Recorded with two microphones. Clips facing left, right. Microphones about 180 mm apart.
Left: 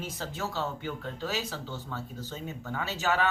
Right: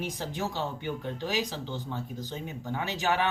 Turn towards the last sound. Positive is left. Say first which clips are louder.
# right 1 dB
turn(degrees=-15)  # may be behind; listen again after turning